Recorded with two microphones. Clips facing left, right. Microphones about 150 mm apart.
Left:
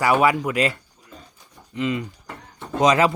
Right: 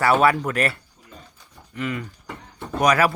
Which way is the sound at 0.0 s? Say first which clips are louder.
Even; 15° left (ahead or behind).